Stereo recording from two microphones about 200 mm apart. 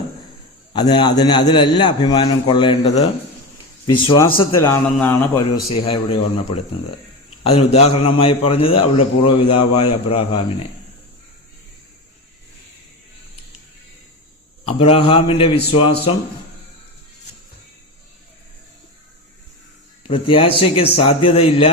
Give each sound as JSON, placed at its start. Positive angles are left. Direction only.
{"t": 0.7, "sound": "a man's voice", "side_deg": 20}
{"t": 5.8, "sound": "a man's voice", "side_deg": 25}
{"t": 7.4, "sound": "a man's voice", "side_deg": 30}
{"t": 14.6, "sound": "a man's voice", "side_deg": 30}
{"t": 20.1, "sound": "a man's voice", "side_deg": 25}